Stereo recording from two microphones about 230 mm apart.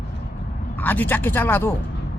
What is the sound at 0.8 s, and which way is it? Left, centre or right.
Speech, centre.